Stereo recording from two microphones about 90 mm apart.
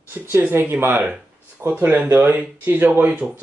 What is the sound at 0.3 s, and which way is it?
Speech, 25° right (ahead or behind).